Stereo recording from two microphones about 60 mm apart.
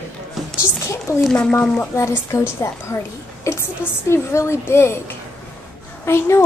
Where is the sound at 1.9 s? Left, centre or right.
Left.